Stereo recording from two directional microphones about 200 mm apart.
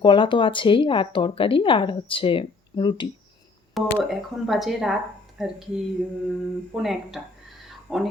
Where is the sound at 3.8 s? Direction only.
Centre (ahead or behind).